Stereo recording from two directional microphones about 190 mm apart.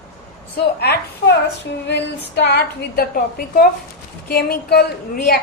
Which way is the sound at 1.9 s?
60° left (ahead or behind).